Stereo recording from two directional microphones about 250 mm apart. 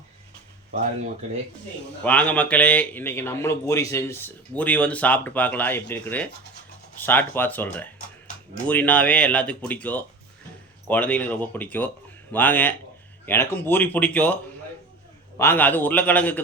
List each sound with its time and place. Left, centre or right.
0.7 s speech: right
2.0 s a man's voice: centre
15.4 s a man's voice: centre